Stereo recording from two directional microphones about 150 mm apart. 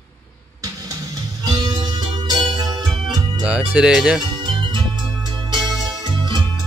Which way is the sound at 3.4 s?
5° right (ahead or behind).